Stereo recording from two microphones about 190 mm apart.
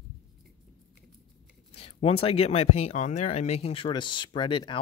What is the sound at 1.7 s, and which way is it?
Speech, 30° left (ahead or behind).